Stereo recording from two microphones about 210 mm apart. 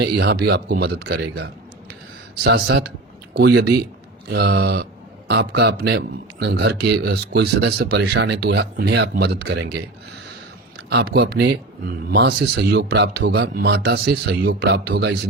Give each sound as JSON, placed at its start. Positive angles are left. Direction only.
{"t": 0.0, "sound": "speech", "side_deg": -50}
{"t": 10.8, "sound": "speech", "side_deg": -55}